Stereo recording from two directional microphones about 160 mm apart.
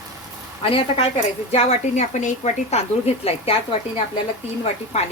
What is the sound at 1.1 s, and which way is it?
Speech, 45° left (ahead or behind).